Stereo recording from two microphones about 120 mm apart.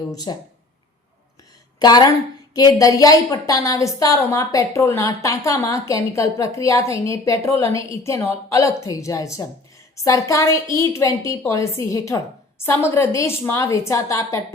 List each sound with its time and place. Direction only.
0.3 s speech: 40° left (ahead or behind)
1.8 s a woman's voice: 35° left (ahead or behind)